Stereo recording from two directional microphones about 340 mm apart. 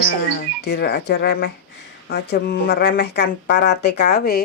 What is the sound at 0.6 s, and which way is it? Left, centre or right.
Speech, left.